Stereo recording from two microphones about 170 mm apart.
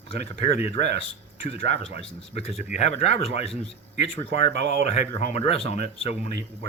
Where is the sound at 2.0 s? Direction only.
35° left (ahead or behind).